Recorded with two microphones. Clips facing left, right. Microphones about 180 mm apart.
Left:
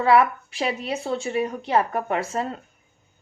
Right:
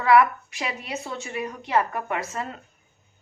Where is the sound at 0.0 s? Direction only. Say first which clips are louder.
Even; 30° left (ahead or behind).